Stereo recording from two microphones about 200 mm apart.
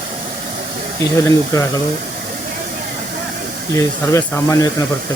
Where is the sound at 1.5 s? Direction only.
15° left (ahead or behind).